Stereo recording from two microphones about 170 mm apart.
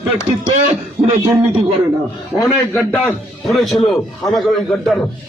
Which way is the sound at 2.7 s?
10° left (ahead or behind).